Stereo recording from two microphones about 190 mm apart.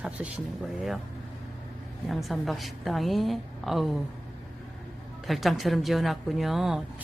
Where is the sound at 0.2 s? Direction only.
5° right (ahead or behind).